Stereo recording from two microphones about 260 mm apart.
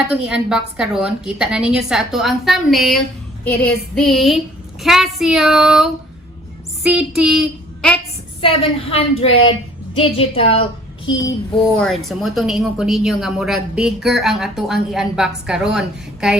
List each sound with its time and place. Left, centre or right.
0.1 s a woman's voice: centre
6.8 s child singing: centre
8.4 s a woman's voice: left
11.8 s a woman's voice: centre